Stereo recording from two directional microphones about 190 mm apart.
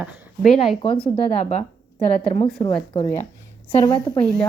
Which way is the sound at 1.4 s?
40° left (ahead or behind).